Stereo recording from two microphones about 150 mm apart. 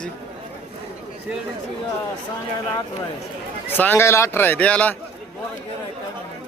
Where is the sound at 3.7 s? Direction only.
15° left (ahead or behind).